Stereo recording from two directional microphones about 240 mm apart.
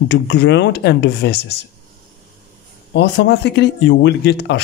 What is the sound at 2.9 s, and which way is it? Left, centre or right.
Speech, left.